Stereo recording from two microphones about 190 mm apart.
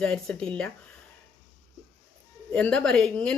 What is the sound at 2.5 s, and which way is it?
Speech, 5° left (ahead or behind).